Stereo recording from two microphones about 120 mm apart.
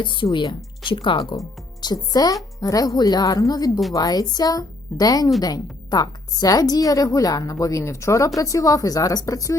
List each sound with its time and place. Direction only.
0.0 s a woman's voice: 40° left (ahead or behind); by 9.6 s 25° left (ahead or behind)